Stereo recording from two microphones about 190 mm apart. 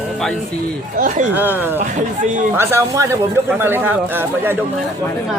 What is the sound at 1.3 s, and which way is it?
Speech, 10° right (ahead or behind).